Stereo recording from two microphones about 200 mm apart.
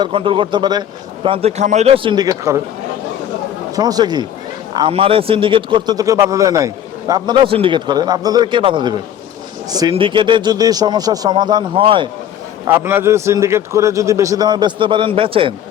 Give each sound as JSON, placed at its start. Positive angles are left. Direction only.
{"t": 0.0, "sound": "a man's voice", "side_deg": -25}
{"t": 3.8, "sound": "a man's voice", "side_deg": -20}
{"t": 12.6, "sound": "a man's voice", "side_deg": -10}